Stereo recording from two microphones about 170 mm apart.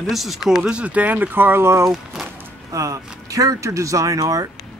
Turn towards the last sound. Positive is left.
turn(degrees=-20)  # may be behind; listen again after turning